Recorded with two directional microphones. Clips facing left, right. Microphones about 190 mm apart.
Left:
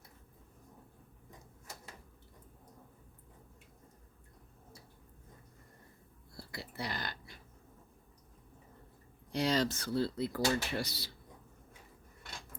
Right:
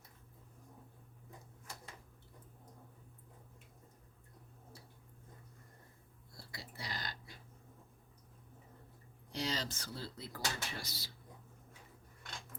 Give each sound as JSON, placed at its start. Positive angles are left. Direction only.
{"t": 6.3, "sound": "whispering", "side_deg": 60}
{"t": 9.3, "sound": "speech", "side_deg": 60}